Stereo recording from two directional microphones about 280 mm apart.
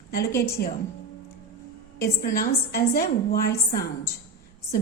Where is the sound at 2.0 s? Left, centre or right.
Left.